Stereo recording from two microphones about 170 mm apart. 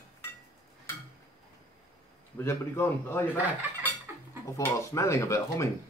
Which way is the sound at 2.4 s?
15° left (ahead or behind).